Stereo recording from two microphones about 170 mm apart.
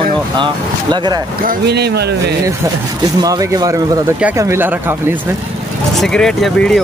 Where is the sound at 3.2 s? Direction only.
20° right (ahead or behind).